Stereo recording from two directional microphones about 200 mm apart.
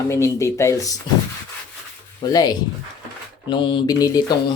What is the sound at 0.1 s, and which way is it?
Speech, 15° left (ahead or behind).